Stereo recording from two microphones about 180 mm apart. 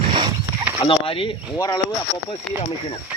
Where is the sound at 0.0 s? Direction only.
25° right (ahead or behind).